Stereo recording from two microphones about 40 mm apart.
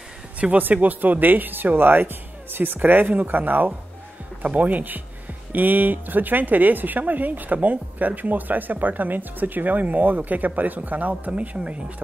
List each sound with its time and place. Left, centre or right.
0.6 s speech: right